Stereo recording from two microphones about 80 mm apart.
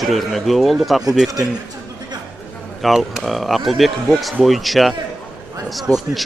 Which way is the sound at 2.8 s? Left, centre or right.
Centre.